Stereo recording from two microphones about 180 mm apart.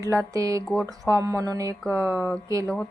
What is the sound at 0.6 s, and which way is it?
Speech, 5° left (ahead or behind).